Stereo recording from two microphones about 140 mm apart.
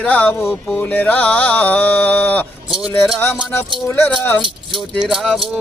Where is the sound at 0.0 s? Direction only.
10° left (ahead or behind).